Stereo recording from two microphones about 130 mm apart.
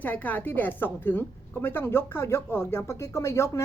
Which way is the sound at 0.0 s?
10° left (ahead or behind).